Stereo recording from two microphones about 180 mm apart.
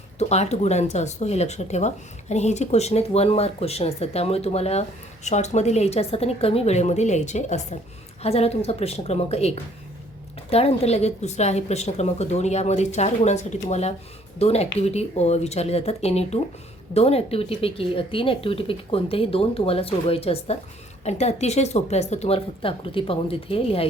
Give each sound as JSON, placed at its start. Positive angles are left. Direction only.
{"t": 0.2, "sound": "speech", "side_deg": 40}
{"t": 10.5, "sound": "speech", "side_deg": 35}